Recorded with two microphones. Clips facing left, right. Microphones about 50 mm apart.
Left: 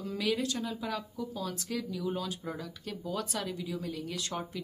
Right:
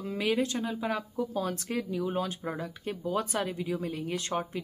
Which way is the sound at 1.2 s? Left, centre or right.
Right.